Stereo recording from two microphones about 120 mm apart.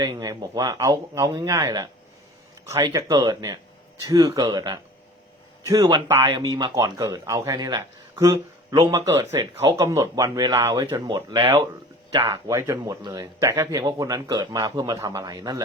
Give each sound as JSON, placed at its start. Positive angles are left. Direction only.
{"t": 0.0, "sound": "a man's voice", "side_deg": -30}
{"t": 6.1, "sound": "a man's voice", "side_deg": -25}
{"t": 6.4, "sound": "a man's voice", "side_deg": -35}